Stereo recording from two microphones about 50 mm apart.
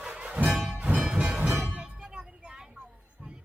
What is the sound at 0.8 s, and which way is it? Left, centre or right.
Music, right.